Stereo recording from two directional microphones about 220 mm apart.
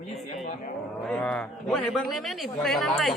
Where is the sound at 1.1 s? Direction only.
5° left (ahead or behind).